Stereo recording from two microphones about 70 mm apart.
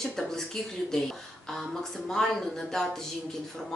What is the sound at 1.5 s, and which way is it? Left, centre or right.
Speech, centre.